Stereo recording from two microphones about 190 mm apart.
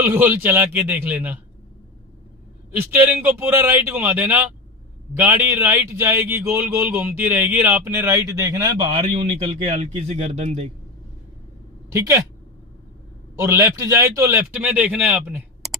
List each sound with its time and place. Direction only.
0.0 s a man's voice: 10° right (ahead or behind)
2.7 s a man's voice: 10° right (ahead or behind); by 10.7 s 35° right (ahead or behind)
11.9 s speech: 15° right (ahead or behind)
13.3 s a man's voice: 15° right (ahead or behind)